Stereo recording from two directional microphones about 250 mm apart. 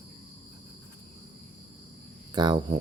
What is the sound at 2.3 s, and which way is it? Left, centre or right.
Speech, centre.